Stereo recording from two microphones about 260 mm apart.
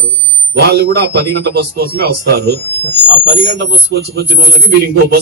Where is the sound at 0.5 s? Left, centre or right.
Right.